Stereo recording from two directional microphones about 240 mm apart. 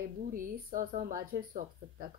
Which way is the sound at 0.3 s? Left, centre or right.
Right.